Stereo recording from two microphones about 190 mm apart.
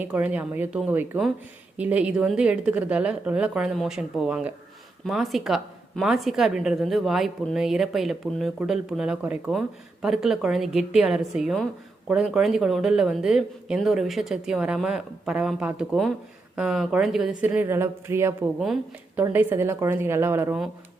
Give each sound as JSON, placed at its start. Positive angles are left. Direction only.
{"t": 0.0, "sound": "a woman's voice", "side_deg": -5}
{"t": 18.6, "sound": "a woman's voice", "side_deg": 0}